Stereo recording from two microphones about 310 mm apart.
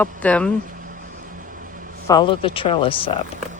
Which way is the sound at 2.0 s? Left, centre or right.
Centre.